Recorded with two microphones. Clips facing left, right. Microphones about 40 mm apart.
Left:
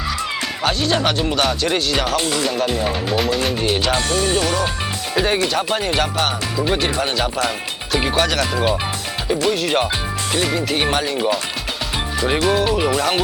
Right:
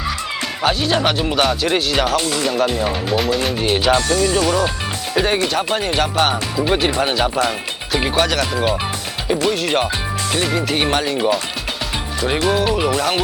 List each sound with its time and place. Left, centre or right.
0.6 s speech: centre
4.1 s speech: left
5.1 s speech: centre